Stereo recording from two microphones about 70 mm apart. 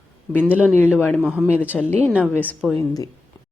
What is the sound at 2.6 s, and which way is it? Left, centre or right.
Speech, centre.